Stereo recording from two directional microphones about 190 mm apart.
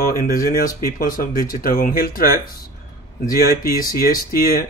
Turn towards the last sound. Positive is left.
turn(degrees=50)  # may be behind; listen again after turning